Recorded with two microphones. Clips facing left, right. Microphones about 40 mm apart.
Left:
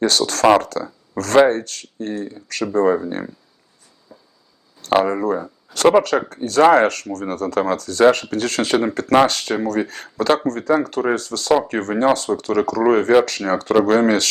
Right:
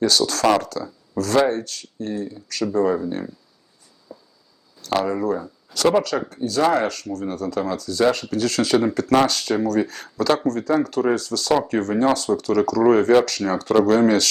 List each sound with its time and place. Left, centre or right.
0.0 s speech: left
4.1 s a sound: left
4.8 s speech: left